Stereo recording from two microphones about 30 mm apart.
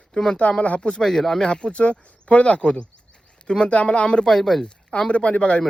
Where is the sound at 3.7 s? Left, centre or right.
Left.